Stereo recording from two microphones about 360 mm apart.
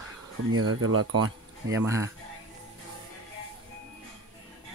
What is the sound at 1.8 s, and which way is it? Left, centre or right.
Speech, centre.